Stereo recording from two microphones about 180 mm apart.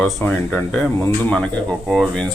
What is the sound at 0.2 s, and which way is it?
Speech, 10° left (ahead or behind).